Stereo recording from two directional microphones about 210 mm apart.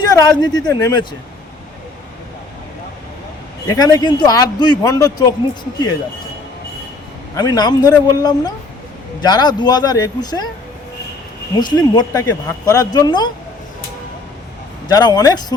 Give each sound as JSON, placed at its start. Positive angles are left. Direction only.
{"t": 0.1, "sound": "speech", "side_deg": 20}
{"t": 3.7, "sound": "speech", "side_deg": 15}
{"t": 7.3, "sound": "speech", "side_deg": 20}
{"t": 11.6, "sound": "speech", "side_deg": 20}
{"t": 14.8, "sound": "speech", "side_deg": 20}